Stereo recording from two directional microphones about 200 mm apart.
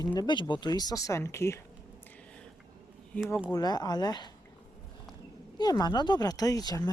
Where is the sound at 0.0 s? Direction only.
20° left (ahead or behind).